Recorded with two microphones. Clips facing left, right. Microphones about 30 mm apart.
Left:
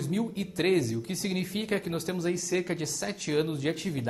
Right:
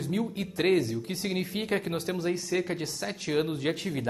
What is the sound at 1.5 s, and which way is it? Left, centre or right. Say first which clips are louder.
Speech: right 1 dB; centre.